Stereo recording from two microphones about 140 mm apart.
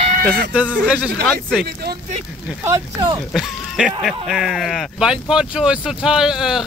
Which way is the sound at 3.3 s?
Centre (ahead or behind).